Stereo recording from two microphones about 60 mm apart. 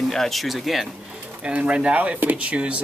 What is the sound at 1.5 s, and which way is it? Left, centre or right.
Speech, centre.